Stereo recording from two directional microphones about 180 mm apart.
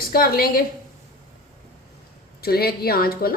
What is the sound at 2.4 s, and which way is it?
Speech, 60° left (ahead or behind).